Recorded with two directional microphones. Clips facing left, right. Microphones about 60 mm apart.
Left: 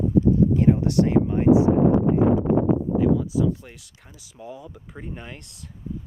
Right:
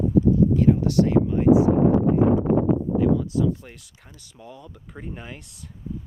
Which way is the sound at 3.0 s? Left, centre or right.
Centre.